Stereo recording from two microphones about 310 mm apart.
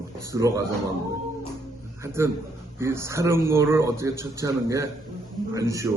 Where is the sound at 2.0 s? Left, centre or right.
Centre.